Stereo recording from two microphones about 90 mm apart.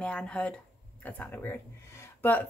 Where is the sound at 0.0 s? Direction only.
10° left (ahead or behind).